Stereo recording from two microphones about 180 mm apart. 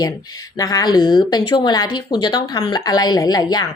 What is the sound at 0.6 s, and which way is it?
Speech, 20° left (ahead or behind).